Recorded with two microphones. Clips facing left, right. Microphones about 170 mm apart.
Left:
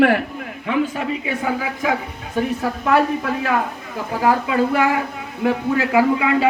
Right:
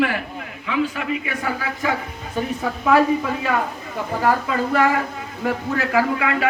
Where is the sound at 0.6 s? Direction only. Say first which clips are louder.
Left 2 dB; 50° left (ahead or behind).